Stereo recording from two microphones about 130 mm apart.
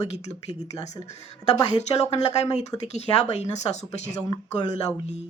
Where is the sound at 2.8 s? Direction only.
55° left (ahead or behind).